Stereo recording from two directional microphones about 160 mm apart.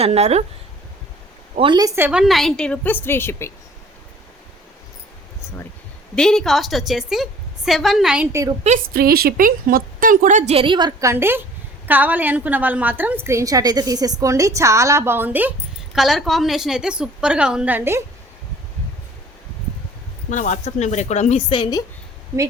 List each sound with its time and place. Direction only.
0.0 s speech: 40° right (ahead or behind)
1.5 s a woman's voice: 30° right (ahead or behind)
2.0 s a woman's voice: 5° right (ahead or behind); by 3.5 s 15° left (ahead or behind)
6.1 s a woman's voice: 5° left (ahead or behind)
8.3 s a woman's voice: 20° right (ahead or behind)
8.9 s a woman's voice: 70° right (ahead or behind); by 11.1 s 25° right (ahead or behind)
11.1 s a woman's voice: 15° right (ahead or behind)
16.0 s a woman's voice: centre (ahead or behind)
20.3 s a woman's voice: 50° left (ahead or behind); by 21.8 s 25° left (ahead or behind)